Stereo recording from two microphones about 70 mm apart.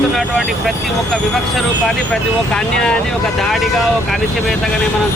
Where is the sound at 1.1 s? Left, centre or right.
Centre.